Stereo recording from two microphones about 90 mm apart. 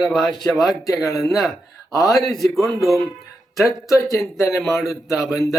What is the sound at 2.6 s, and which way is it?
Speech, 35° left (ahead or behind).